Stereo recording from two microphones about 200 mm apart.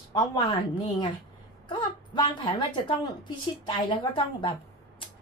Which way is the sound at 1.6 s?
25° left (ahead or behind).